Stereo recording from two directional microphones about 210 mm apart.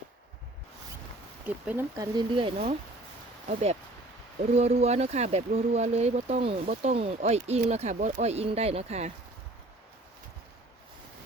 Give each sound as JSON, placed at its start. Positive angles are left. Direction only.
{"t": 1.5, "sound": "speech", "side_deg": -10}
{"t": 2.1, "sound": "speech", "side_deg": -25}
{"t": 4.5, "sound": "speech", "side_deg": -30}